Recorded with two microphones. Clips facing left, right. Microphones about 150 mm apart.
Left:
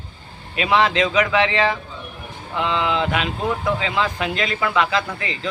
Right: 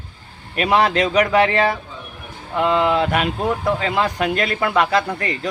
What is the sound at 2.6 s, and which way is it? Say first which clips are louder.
A man's voice: right 4 dB; 45° right (ahead or behind).